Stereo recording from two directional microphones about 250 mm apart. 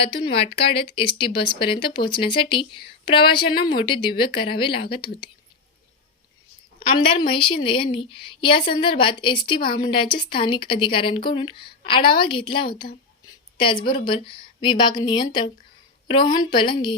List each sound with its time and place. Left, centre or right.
0.6 s speech: left
7.0 s speech: centre
12.8 s a woman's voice: left
13.6 s speech: centre